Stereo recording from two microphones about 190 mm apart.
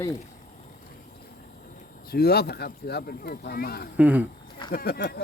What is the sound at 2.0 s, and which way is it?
Speech, 55° left (ahead or behind).